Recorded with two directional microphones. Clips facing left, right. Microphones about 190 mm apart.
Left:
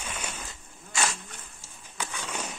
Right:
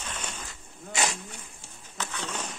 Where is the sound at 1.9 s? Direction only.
10° left (ahead or behind).